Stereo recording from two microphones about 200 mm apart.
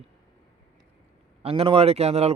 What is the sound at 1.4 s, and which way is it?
Speech, 30° right (ahead or behind).